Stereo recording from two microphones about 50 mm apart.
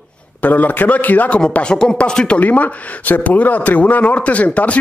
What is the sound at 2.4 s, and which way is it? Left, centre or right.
Speech, left.